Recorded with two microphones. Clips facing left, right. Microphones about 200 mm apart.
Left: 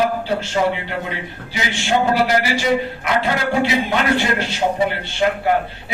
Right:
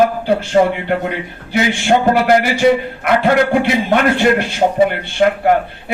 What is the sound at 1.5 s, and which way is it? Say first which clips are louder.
A man's voice: right 6 dB; 55° right (ahead or behind).